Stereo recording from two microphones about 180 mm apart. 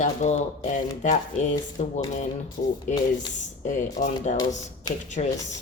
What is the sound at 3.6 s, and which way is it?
Speech, 45° left (ahead or behind).